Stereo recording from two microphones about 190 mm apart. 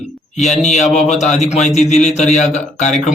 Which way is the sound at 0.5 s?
35° left (ahead or behind).